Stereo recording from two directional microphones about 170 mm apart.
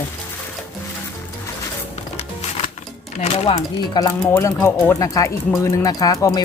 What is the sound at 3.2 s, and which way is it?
Speech, 40° left (ahead or behind).